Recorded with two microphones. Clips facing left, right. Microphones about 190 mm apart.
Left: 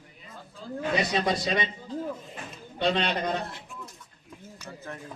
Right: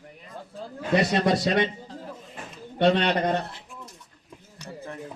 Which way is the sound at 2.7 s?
65° right (ahead or behind).